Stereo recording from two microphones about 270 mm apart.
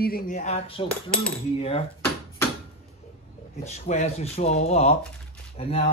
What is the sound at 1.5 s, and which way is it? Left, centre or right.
Speech, left.